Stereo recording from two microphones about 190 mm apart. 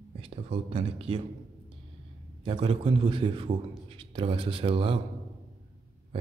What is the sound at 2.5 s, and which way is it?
A man's voice, 25° right (ahead or behind).